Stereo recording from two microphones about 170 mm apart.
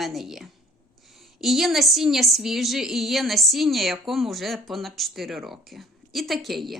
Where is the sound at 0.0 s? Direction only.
Centre (ahead or behind).